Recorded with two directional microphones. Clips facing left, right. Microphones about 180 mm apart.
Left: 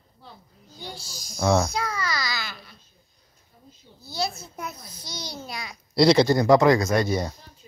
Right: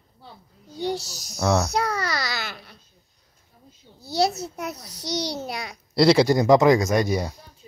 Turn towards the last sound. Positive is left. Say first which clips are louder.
# right 1 dB
turn(degrees=-15)  # may be behind; listen again after turning